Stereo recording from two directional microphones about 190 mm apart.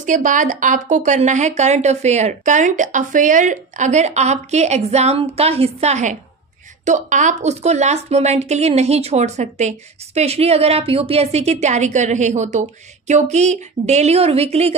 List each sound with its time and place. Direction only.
0.0 s a woman's voice: 40° right (ahead or behind)